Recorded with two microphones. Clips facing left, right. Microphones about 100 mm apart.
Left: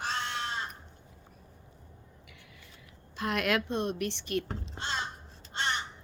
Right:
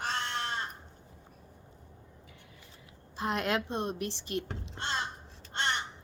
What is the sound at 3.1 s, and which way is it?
A woman's voice, 25° right (ahead or behind).